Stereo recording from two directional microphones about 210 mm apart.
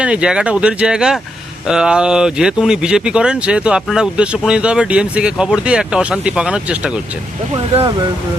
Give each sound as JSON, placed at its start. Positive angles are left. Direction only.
{"t": 0.0, "sound": "speech", "side_deg": -5}
{"t": 7.5, "sound": "speech", "side_deg": -25}